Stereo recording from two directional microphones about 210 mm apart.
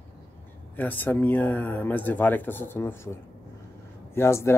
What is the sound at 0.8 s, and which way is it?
Speech, 10° left (ahead or behind).